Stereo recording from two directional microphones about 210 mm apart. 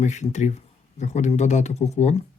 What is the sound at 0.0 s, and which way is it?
Speech, 35° left (ahead or behind).